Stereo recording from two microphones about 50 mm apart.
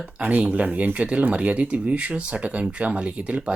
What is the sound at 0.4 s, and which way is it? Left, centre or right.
Speech, right.